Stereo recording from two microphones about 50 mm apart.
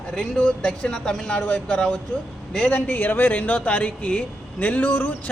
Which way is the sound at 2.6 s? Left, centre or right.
Left.